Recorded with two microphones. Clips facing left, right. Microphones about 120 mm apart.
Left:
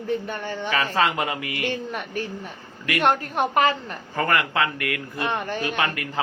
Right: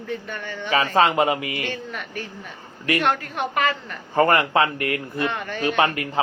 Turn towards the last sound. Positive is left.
turn(degrees=-30)  # may be behind; listen again after turning